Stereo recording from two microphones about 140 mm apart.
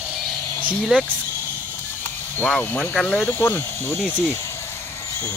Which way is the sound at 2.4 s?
10° left (ahead or behind).